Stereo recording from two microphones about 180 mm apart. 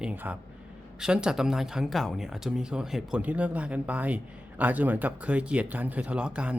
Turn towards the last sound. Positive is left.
turn(degrees=-5)  # may be behind; listen again after turning